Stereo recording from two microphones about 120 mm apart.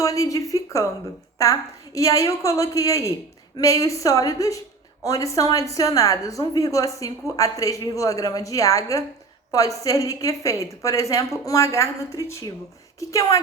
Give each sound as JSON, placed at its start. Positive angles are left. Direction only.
{"t": 0.0, "sound": "a woman's voice", "side_deg": 25}